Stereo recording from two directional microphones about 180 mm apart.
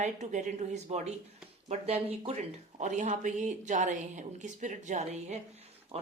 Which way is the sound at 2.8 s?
40° right (ahead or behind).